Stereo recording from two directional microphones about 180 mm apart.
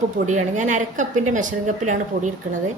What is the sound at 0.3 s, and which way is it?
A woman's voice, 40° right (ahead or behind).